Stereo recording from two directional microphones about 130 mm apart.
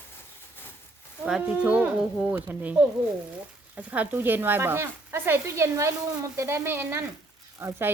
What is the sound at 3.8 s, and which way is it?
A woman's voice, 10° right (ahead or behind).